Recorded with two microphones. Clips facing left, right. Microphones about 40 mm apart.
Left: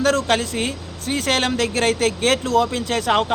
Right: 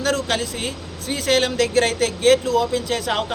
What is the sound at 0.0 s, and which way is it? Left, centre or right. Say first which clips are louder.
Speech: left 3 dB; left.